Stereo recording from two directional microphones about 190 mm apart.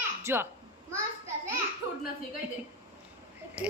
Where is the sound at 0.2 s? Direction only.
15° right (ahead or behind).